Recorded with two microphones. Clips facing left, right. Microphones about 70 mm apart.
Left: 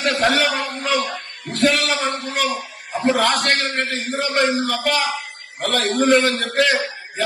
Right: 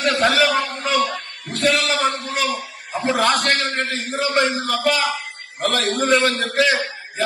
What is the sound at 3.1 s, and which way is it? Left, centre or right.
Speech, right.